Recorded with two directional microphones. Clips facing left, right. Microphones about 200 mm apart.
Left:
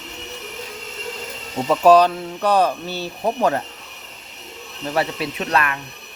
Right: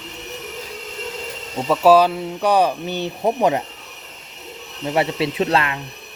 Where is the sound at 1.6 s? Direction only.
5° right (ahead or behind).